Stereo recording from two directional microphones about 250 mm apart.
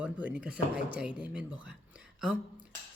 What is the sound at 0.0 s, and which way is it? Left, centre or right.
Speech, centre.